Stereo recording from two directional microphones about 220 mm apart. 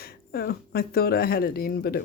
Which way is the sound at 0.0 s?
45° left (ahead or behind).